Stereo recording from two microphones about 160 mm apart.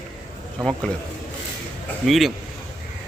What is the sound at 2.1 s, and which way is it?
Speech, centre (ahead or behind).